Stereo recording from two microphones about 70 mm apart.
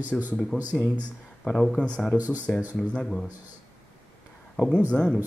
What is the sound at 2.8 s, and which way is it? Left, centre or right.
Speech, centre.